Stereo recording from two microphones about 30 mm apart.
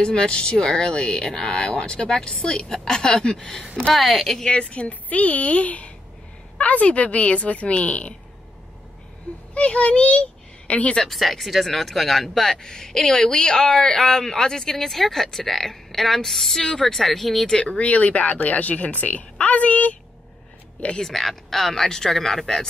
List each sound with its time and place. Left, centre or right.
0.0 s speech: left
3.9 s speech: centre
4.5 s a woman's voice: left
5.1 s speech: left
9.5 s speech: left
11.1 s speech: centre
12.6 s speech: left; by 17.5 s centre
17.5 s speech: centre
17.7 s speech: left
21.0 s speech: centre
21.8 s speech: centre